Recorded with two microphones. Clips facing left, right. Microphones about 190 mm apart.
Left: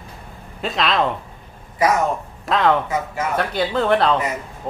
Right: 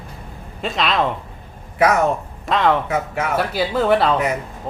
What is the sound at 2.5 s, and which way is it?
A woman's voice, centre (ahead or behind).